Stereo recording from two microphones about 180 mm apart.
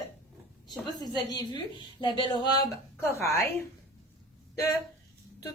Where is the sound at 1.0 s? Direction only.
25° left (ahead or behind).